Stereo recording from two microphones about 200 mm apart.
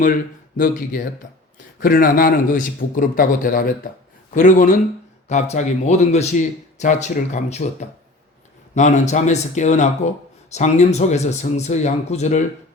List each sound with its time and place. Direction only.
0.0 s a man's voice: 45° left (ahead or behind)